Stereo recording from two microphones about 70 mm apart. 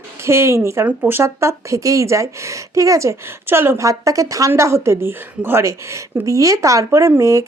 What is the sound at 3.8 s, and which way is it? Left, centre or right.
Speech, right.